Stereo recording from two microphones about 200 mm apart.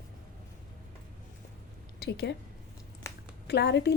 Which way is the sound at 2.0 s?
50° left (ahead or behind).